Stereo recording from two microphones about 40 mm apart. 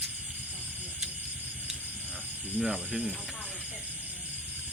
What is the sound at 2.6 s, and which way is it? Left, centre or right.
Speech, centre.